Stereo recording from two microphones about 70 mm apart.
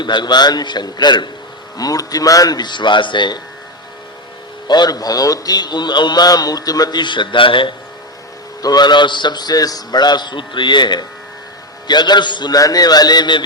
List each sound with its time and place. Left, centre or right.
0.0 s a man's voice: left
1.8 s a man's voice: left
4.7 s a man's voice: left
8.6 s a man's voice: left